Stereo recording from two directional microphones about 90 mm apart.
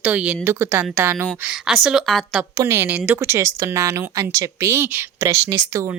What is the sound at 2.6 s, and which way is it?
Speech, 30° right (ahead or behind).